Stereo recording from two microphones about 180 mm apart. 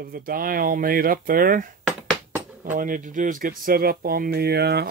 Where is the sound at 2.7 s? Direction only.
50° right (ahead or behind).